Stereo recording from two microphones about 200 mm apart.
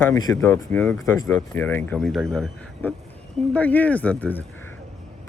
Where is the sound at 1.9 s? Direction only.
Centre (ahead or behind).